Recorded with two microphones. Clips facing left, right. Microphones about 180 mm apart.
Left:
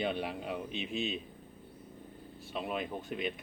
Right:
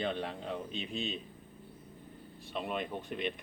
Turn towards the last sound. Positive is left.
turn(degrees=5)  # may be behind; listen again after turning